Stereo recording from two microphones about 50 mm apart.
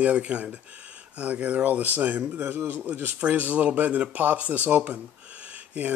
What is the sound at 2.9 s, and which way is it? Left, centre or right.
Speech, right.